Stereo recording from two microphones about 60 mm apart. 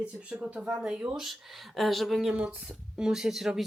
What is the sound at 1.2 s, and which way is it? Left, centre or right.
Speech, centre.